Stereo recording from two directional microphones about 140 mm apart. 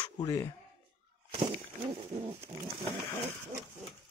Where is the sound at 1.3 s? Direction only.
35° right (ahead or behind).